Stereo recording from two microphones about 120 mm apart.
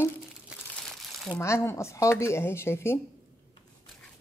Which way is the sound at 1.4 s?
25° left (ahead or behind).